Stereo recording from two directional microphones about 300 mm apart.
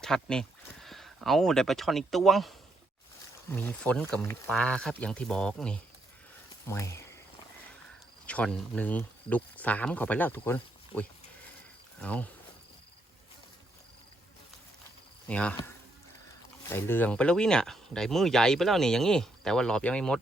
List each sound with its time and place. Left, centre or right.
0.0 s speech: centre
8.3 s speech: centre
15.3 s speech: centre